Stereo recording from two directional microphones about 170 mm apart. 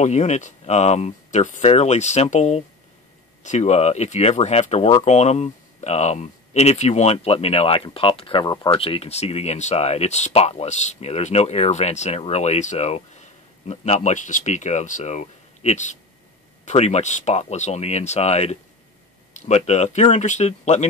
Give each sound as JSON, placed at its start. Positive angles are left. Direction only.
{"t": 0.0, "sound": "speech", "side_deg": 40}